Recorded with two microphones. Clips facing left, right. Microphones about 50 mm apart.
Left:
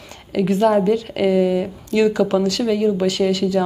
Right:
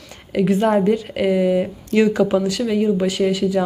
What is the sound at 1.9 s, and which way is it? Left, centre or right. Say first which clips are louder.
Speech: right 1 dB; right.